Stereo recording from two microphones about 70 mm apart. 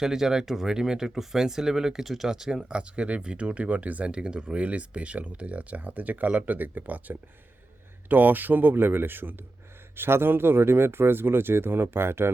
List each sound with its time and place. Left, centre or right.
0.0 s speech: centre; by 12.3 s right